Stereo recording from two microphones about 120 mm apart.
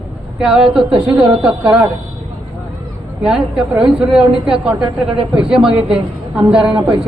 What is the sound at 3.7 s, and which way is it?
A woman's voice, 5° right (ahead or behind).